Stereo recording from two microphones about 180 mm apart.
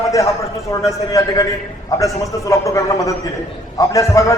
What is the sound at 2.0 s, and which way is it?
A man's voice, 15° left (ahead or behind).